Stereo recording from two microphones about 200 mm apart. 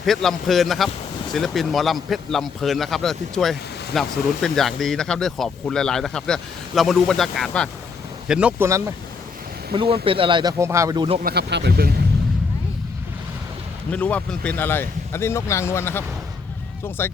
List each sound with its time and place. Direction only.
0.0 s speech: centre (ahead or behind)
9.7 s speech: 25° right (ahead or behind)
11.2 s speech: 50° right (ahead or behind)
13.9 s speech: 5° left (ahead or behind)